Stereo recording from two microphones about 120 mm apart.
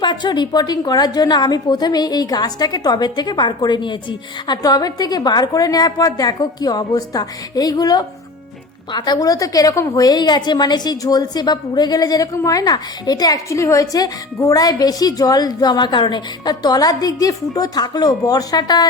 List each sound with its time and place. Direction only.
0.0 s a woman's voice: 40° left (ahead or behind)